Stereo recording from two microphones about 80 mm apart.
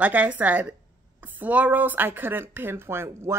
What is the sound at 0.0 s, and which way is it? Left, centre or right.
Speech, centre.